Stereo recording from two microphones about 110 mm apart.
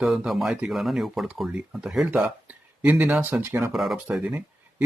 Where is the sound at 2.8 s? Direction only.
15° right (ahead or behind).